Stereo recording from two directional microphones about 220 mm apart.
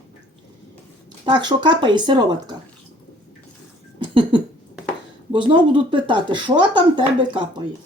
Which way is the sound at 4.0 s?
20° right (ahead or behind).